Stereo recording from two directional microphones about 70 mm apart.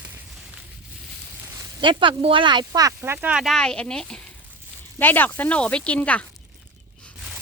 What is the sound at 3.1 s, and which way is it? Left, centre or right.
Speech, centre.